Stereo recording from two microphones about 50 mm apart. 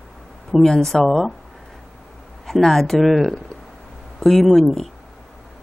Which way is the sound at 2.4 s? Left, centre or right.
Centre.